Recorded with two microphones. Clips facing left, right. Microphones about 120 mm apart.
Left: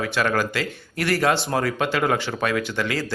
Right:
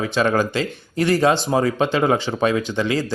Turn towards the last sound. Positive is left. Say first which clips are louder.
# right 4 dB
turn(degrees=-20)  # may be behind; listen again after turning